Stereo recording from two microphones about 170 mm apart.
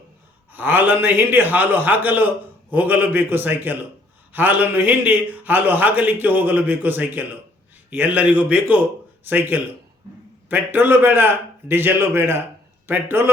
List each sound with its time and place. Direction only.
0.5 s a man's voice: 10° right (ahead or behind)